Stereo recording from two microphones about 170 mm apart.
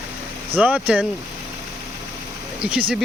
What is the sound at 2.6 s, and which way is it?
Speech, 5° right (ahead or behind).